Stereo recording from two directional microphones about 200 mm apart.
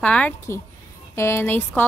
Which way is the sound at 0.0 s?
5° left (ahead or behind).